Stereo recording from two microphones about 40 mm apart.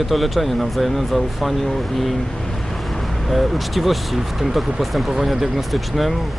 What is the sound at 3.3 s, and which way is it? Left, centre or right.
Speech, centre.